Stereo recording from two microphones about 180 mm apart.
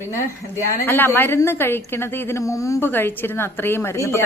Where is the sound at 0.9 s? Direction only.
10° left (ahead or behind).